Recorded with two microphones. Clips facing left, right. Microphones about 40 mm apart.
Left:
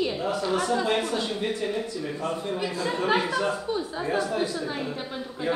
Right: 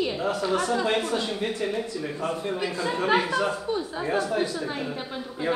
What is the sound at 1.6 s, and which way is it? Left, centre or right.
A woman's voice, centre.